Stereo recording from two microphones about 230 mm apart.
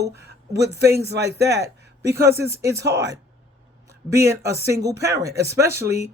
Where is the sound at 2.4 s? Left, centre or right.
Centre.